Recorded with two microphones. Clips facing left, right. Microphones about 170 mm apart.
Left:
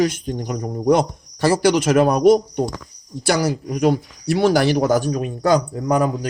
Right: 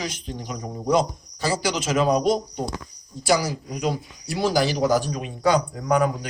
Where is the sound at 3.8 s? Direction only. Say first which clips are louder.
Left 9 dB; 65° left (ahead or behind).